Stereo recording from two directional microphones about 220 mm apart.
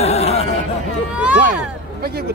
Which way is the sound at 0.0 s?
30° left (ahead or behind).